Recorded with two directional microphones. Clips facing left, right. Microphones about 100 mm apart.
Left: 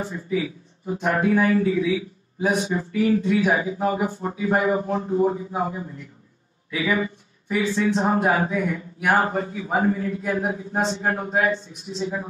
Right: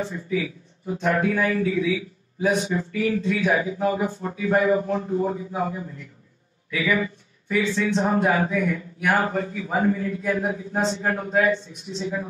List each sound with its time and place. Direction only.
0.0 s speech: 25° left (ahead or behind)
2.5 s a sound: 35° left (ahead or behind)
2.8 s speech: 25° left (ahead or behind)